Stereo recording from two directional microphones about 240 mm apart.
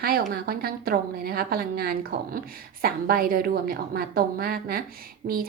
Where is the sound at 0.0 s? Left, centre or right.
Right.